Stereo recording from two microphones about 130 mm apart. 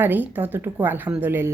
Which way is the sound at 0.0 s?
15° right (ahead or behind).